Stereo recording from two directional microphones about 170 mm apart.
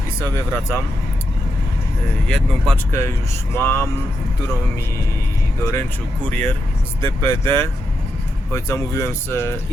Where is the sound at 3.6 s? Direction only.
15° left (ahead or behind).